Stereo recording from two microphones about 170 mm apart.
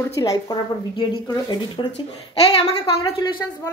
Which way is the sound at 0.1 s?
20° left (ahead or behind).